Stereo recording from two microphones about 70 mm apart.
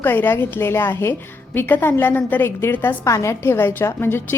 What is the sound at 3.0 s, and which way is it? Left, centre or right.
A woman's voice, left.